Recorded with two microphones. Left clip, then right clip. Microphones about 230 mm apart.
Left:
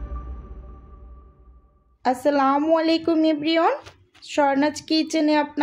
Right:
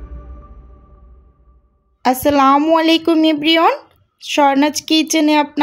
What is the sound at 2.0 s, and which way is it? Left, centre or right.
Speech, right.